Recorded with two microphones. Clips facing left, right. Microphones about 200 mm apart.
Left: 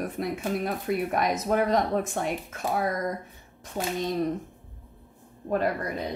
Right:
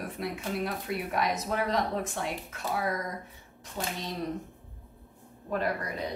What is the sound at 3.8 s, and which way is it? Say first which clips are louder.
Speech: left 5 dB; 45° left (ahead or behind).